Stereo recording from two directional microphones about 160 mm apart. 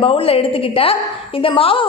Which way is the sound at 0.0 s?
35° left (ahead or behind).